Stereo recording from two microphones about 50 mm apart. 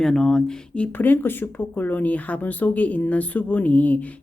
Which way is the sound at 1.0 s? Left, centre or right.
Left.